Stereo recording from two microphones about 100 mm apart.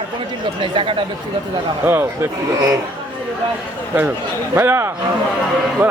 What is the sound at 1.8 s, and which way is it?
Speech, 25° right (ahead or behind).